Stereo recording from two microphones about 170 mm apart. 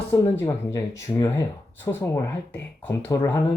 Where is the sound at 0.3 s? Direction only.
15° left (ahead or behind).